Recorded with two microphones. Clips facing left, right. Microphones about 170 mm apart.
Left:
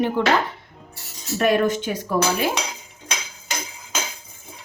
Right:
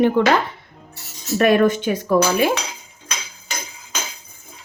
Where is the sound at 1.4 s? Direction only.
65° right (ahead or behind).